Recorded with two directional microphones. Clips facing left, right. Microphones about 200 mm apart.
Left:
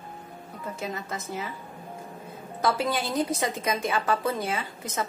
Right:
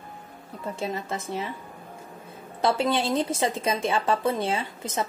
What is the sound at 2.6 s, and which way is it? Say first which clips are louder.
A woman's voice: right 3 dB; 25° right (ahead or behind).